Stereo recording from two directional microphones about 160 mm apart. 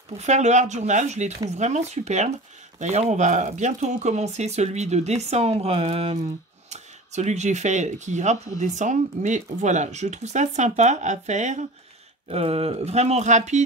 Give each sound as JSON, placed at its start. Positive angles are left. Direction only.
{"t": 0.2, "sound": "speech", "side_deg": -45}